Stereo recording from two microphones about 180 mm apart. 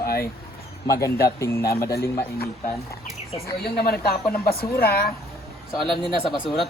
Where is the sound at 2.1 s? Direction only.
55° left (ahead or behind).